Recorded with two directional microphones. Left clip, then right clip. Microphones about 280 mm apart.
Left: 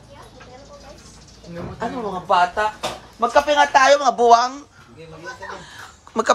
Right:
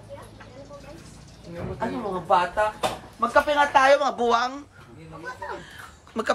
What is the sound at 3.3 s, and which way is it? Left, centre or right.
Speech, centre.